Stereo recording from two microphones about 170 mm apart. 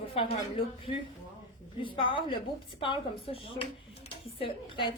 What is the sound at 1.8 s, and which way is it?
A woman's voice, 30° left (ahead or behind).